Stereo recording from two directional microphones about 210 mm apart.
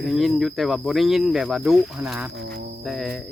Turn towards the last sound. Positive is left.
turn(degrees=0)  # may be behind; listen again after turning